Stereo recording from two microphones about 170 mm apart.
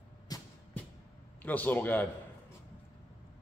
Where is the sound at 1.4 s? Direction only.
10° left (ahead or behind).